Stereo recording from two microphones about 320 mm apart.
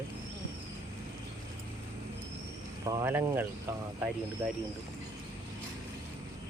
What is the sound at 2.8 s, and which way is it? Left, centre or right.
Speech, centre.